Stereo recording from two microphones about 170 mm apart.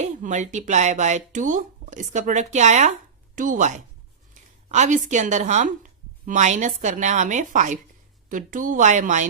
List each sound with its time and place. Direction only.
0.0 s a woman's voice: 45° right (ahead or behind)
4.4 s a sound: 45° right (ahead or behind)
4.7 s a woman's voice: 45° right (ahead or behind)